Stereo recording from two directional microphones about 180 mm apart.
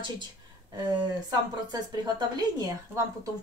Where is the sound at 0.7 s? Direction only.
25° right (ahead or behind).